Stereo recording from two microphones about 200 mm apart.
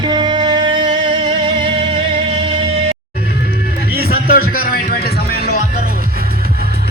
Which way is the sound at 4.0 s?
50° left (ahead or behind).